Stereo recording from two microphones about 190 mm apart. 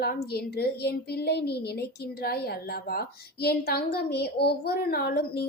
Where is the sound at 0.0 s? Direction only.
55° left (ahead or behind).